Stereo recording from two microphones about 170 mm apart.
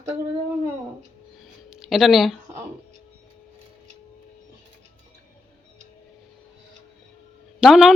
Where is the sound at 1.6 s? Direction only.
5° right (ahead or behind).